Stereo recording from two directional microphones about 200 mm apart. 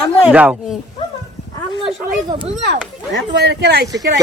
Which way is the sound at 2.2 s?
25° right (ahead or behind).